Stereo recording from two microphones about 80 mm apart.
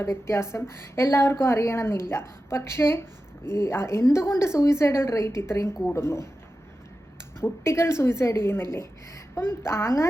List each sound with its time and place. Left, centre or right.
0.0 s a woman's voice: left
7.3 s a woman's voice: left